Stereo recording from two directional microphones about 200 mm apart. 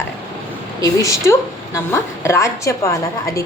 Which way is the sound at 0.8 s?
15° left (ahead or behind).